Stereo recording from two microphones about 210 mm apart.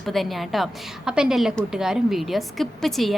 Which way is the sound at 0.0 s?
Centre (ahead or behind).